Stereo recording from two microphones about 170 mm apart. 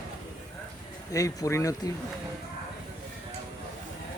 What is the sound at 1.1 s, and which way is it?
Speech, 20° left (ahead or behind).